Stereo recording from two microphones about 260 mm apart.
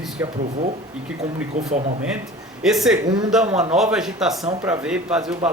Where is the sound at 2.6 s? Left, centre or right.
Centre.